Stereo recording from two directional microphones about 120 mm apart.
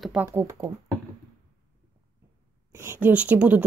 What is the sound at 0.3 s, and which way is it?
Speech, 25° right (ahead or behind).